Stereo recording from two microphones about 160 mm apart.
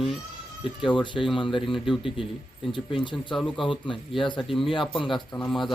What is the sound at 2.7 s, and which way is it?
Speech, 30° left (ahead or behind).